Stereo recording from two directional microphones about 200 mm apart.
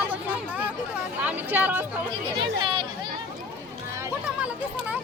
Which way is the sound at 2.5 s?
25° right (ahead or behind).